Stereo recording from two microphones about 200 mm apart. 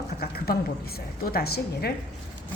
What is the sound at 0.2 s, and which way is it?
Speech, 50° left (ahead or behind).